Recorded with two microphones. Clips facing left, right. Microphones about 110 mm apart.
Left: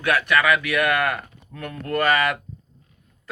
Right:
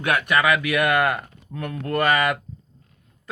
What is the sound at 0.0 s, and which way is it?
Speech, 20° right (ahead or behind).